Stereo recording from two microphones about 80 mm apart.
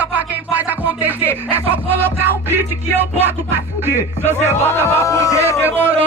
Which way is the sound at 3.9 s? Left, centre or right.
Right.